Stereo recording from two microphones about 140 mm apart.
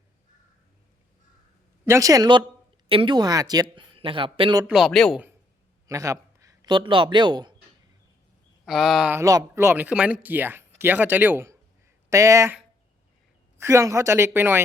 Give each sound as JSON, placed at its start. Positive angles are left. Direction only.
{"t": 1.8, "sound": "speech", "side_deg": -20}
{"t": 3.9, "sound": "speech", "side_deg": -40}
{"t": 4.6, "sound": "speech", "side_deg": -5}
{"t": 5.9, "sound": "a man's voice", "side_deg": -25}
{"t": 8.6, "sound": "speech", "side_deg": 0}
{"t": 9.1, "sound": "speech", "side_deg": -20}
{"t": 13.6, "sound": "speech", "side_deg": -20}